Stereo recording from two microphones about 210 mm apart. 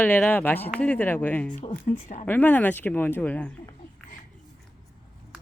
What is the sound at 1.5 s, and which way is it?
Speech, 35° left (ahead or behind).